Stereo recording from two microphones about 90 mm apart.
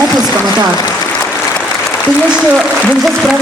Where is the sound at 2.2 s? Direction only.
10° right (ahead or behind).